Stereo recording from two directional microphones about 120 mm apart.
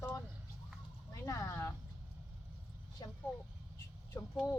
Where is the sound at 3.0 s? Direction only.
30° left (ahead or behind).